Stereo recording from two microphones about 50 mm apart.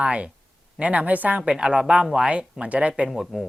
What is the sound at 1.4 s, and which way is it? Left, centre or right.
Speech, centre.